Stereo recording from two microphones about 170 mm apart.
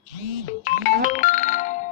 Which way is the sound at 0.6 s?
50° left (ahead or behind).